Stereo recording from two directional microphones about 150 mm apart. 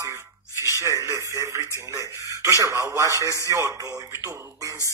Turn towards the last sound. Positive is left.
turn(degrees=-20)  # may be behind; listen again after turning